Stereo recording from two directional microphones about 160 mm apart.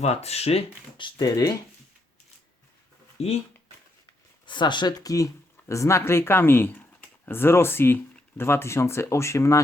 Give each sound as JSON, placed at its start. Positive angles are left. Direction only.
{"t": 0.0, "sound": "speech", "side_deg": 40}
{"t": 3.2, "sound": "speech", "side_deg": 40}
{"t": 4.4, "sound": "speech", "side_deg": 30}